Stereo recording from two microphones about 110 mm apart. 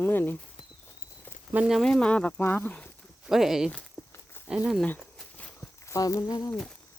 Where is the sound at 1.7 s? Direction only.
Centre (ahead or behind).